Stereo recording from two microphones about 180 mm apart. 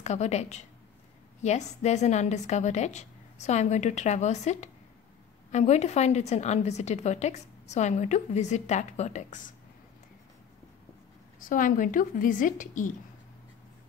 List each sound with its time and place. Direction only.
0.0 s a woman's voice: 40° left (ahead or behind)
11.3 s speech: 50° left (ahead or behind)